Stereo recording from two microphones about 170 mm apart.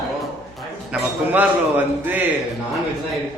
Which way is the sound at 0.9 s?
5° right (ahead or behind).